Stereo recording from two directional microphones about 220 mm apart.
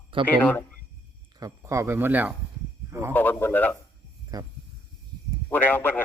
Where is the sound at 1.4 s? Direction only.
15° right (ahead or behind).